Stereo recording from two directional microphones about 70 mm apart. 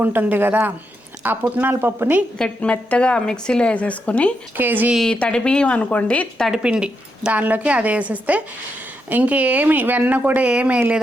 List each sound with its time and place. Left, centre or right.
0.0 s a woman's voice: right
2.4 s a woman's voice: centre
4.5 s a woman's voice: right
5.2 s a woman's voice: centre
6.5 s a woman's voice: centre